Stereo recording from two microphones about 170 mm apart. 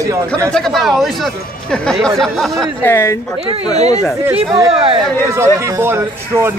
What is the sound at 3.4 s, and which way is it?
Speech, 35° right (ahead or behind).